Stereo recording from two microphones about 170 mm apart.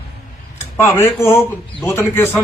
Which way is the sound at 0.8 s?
15° left (ahead or behind).